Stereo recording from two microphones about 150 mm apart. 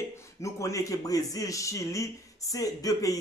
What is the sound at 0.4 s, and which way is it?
A man's voice, 20° left (ahead or behind).